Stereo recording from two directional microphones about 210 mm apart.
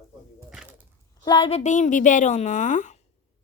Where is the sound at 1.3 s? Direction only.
25° left (ahead or behind).